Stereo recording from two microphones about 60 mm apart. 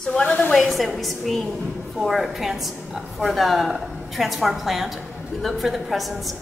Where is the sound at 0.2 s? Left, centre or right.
Left.